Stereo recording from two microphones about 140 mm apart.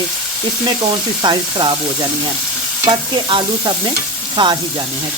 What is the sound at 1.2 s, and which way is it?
Stir, 35° right (ahead or behind).